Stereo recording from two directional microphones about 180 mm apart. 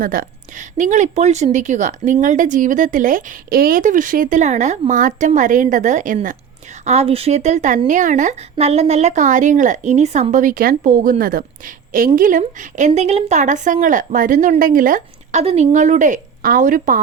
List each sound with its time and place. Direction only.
0.0 s speech: 50° right (ahead or behind)